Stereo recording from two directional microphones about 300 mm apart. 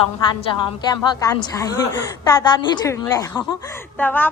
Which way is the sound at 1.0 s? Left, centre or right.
Centre.